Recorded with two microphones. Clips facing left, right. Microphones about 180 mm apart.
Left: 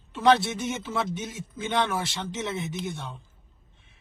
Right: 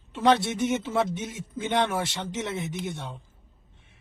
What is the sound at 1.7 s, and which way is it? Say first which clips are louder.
Speech: right 1 dB; 20° right (ahead or behind).